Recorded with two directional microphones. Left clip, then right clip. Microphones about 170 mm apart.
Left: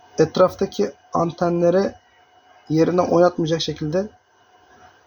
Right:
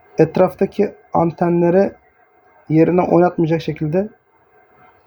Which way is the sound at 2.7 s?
90° right.